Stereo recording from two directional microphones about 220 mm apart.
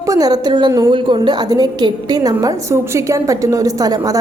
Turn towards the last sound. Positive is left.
turn(degrees=-15)  # may be behind; listen again after turning